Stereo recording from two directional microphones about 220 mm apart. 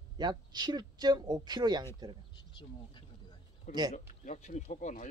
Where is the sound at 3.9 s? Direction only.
35° left (ahead or behind).